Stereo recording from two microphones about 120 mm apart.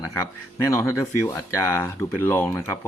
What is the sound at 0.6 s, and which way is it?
Speech, 20° left (ahead or behind).